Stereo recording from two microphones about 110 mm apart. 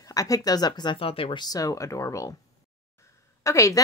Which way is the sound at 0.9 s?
55° left (ahead or behind).